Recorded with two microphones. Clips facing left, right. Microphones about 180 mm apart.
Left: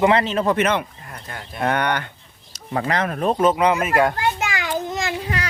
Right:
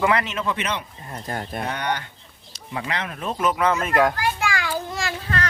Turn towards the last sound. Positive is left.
turn(degrees=15)  # may be behind; listen again after turning